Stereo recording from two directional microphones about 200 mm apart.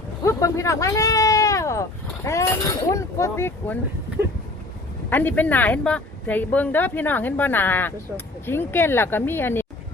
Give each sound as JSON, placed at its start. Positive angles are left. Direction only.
{"t": 0.3, "sound": "speech", "side_deg": 15}
{"t": 5.0, "sound": "speech", "side_deg": 10}